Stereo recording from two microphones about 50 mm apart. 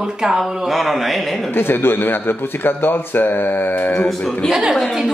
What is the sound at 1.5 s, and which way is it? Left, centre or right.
A man's voice, left.